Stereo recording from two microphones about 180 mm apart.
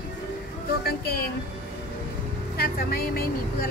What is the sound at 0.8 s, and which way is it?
Speech, 60° left (ahead or behind).